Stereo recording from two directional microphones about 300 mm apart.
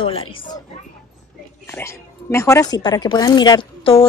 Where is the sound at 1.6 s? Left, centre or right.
Centre.